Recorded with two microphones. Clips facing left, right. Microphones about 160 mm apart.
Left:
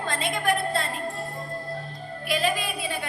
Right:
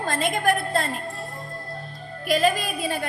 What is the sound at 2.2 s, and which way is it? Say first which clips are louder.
Speech: right 5 dB; 45° right (ahead or behind).